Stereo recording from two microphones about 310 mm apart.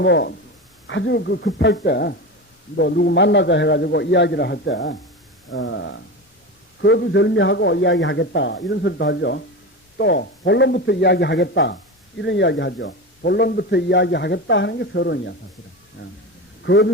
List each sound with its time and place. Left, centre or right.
0.0 s a man's voice: left